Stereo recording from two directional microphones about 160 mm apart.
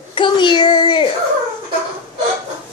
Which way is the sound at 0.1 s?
30° left (ahead or behind).